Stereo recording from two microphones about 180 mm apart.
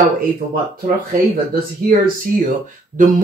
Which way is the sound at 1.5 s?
50° right (ahead or behind).